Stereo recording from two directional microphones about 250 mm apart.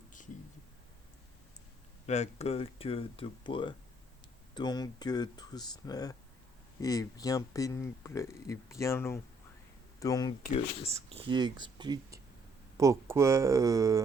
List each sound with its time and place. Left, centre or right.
2.0 s speech: left
10.9 s speech: right